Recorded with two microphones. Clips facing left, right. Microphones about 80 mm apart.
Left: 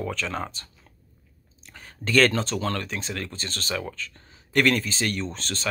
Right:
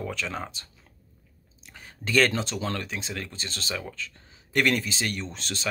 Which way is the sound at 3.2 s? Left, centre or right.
Left.